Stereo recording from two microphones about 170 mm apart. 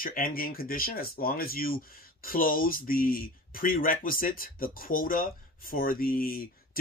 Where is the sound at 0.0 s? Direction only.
60° left (ahead or behind).